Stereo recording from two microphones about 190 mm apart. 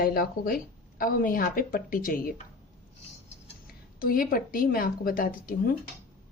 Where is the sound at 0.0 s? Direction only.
50° left (ahead or behind).